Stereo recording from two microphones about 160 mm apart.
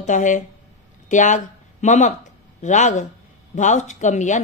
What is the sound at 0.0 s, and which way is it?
A woman's voice, 50° left (ahead or behind).